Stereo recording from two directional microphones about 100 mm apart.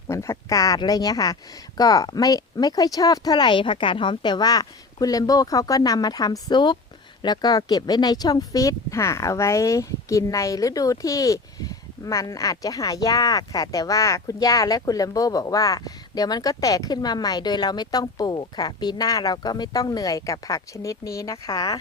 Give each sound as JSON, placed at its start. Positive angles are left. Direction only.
{"t": 0.1, "sound": "speech", "side_deg": 30}